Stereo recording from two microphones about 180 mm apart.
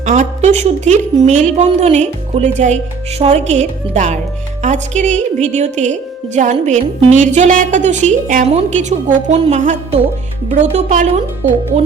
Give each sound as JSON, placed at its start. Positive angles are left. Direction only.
{"t": 0.0, "sound": "a woman's voice", "side_deg": -40}